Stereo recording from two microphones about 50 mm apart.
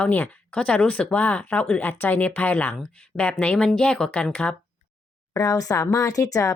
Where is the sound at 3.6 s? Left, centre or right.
Centre.